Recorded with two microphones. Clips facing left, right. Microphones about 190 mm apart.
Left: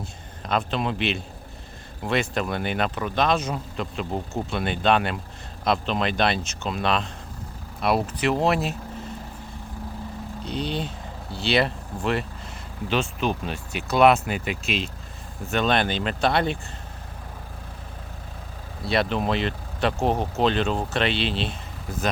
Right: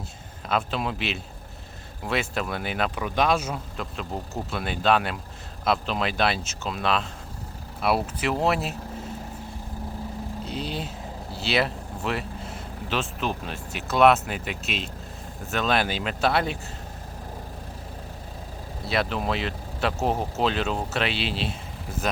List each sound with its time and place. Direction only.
0.4 s speech: 5° right (ahead or behind)
10.4 s speech: 5° right (ahead or behind)
18.9 s speech: centre (ahead or behind)